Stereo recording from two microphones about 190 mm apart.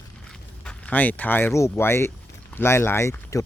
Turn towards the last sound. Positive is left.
turn(degrees=15)  # may be behind; listen again after turning